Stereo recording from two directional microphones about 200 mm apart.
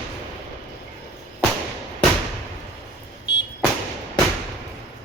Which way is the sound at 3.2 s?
60° left (ahead or behind).